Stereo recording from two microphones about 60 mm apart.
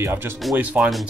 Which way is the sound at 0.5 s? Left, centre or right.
Right.